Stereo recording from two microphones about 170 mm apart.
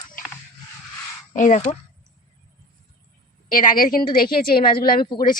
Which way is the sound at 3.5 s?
55° left (ahead or behind).